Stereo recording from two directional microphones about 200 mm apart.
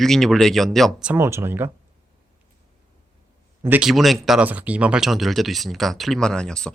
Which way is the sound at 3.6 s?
5° right (ahead or behind).